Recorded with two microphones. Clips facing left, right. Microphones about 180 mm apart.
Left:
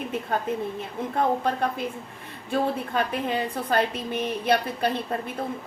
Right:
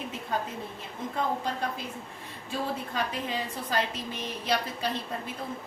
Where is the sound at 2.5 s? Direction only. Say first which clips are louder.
Left 7 dB; 55° left (ahead or behind).